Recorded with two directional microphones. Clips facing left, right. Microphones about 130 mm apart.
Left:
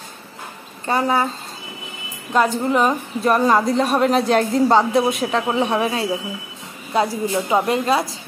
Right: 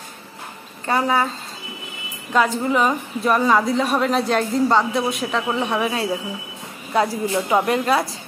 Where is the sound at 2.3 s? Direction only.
Centre (ahead or behind).